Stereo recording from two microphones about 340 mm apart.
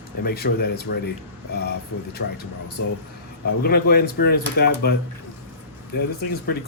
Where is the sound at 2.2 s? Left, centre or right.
Left.